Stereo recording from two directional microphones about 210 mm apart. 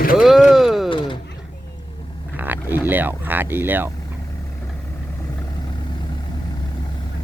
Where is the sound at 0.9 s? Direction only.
25° left (ahead or behind).